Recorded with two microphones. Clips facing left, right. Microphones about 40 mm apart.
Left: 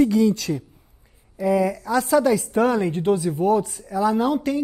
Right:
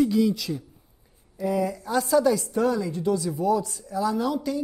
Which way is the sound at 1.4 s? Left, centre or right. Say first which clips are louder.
Left 5 dB; left.